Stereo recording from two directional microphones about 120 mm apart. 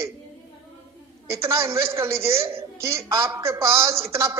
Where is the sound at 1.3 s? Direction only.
25° right (ahead or behind).